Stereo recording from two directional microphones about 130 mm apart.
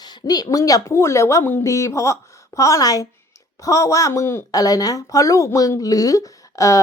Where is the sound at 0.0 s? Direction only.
35° left (ahead or behind).